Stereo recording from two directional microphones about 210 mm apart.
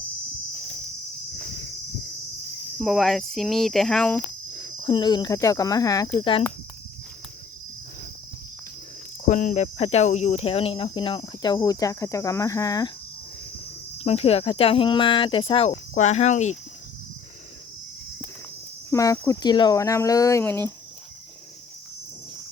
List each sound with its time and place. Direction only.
2.7 s speech: centre (ahead or behind)
4.5 s speech: 20° left (ahead or behind)
9.2 s speech: 35° left (ahead or behind); by 12.9 s 15° left (ahead or behind)
14.0 s speech: 30° left (ahead or behind)
18.9 s speech: 15° left (ahead or behind)